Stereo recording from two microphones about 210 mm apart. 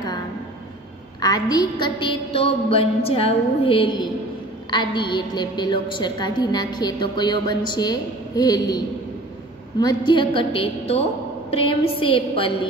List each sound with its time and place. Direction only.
1.2 s a woman's voice: 20° left (ahead or behind)